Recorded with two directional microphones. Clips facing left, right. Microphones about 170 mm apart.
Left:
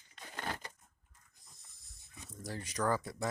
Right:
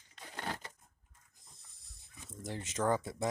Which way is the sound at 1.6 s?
30° right (ahead or behind).